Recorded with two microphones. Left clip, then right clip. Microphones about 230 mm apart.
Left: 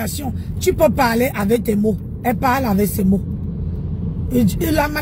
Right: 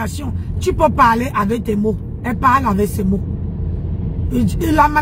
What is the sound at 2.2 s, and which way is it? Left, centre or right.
Speech, right.